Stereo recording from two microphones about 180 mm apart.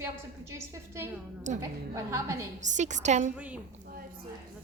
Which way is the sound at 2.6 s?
40° right (ahead or behind).